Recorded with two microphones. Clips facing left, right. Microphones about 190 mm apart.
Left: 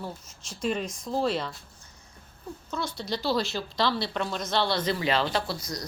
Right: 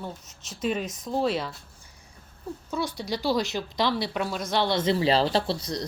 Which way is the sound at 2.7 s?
15° right (ahead or behind).